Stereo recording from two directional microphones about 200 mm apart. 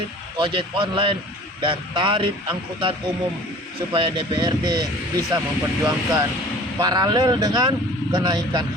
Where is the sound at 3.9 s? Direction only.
25° right (ahead or behind).